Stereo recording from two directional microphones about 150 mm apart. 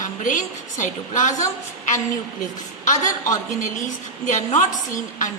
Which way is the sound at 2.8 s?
55° left (ahead or behind).